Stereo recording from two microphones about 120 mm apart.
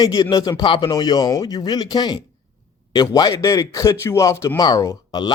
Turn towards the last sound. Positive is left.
turn(degrees=30)  # may be behind; listen again after turning